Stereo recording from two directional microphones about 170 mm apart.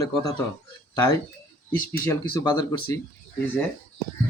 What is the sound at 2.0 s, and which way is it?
Speech, 15° left (ahead or behind).